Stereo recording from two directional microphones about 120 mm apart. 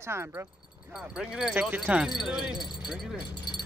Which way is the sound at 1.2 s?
5° right (ahead or behind).